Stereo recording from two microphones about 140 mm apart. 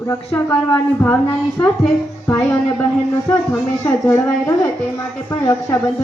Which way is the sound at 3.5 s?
20° left (ahead or behind).